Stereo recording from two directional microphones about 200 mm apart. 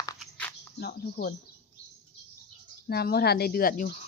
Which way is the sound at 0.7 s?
50° left (ahead or behind).